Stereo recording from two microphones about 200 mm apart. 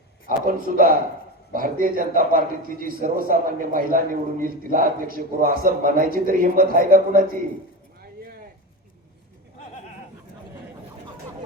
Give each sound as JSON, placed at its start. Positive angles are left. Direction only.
{"t": 0.3, "sound": "a man's voice", "side_deg": -45}